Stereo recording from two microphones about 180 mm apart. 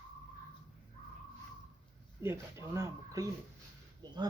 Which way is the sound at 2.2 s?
15° right (ahead or behind).